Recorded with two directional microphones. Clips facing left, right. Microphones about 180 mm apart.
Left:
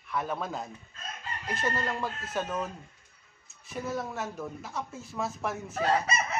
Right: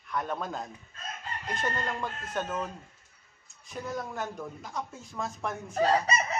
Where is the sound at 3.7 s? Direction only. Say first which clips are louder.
Left 2 dB; 5° left (ahead or behind).